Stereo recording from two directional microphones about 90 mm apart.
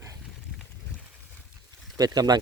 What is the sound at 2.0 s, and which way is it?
Speech, 45° right (ahead or behind).